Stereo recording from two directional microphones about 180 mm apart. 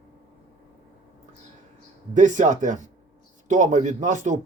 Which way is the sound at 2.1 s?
45° right (ahead or behind).